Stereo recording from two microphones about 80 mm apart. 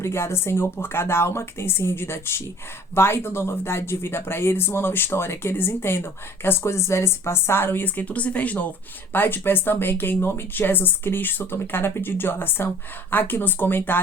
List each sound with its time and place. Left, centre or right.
0.0 s speech: left